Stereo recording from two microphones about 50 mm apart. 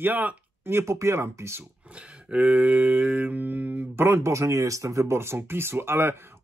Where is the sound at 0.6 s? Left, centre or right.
Right.